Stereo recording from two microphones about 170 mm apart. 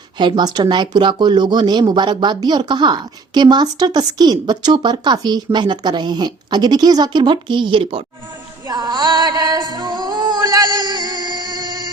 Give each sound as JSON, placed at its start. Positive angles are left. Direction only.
{"t": 0.2, "sound": "speech", "side_deg": -25}
{"t": 8.6, "sound": "music", "side_deg": -25}